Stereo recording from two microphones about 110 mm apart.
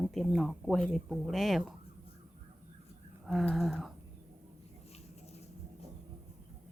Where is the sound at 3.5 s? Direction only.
Centre (ahead or behind).